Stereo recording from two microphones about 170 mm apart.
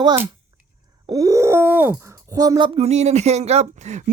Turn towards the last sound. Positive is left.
turn(degrees=-40)  # may be behind; listen again after turning